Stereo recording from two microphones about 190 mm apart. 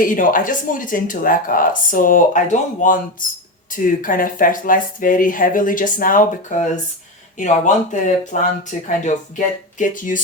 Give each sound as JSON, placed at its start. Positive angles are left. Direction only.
{"t": 0.0, "sound": "speech", "side_deg": 45}